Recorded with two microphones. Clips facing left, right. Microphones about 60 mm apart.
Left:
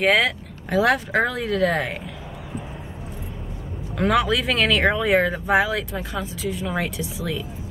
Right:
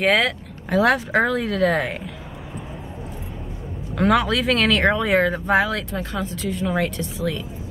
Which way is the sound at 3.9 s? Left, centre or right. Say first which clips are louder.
Right 1 dB; centre.